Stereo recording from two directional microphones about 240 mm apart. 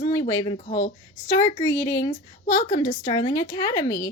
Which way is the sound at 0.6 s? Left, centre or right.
Left.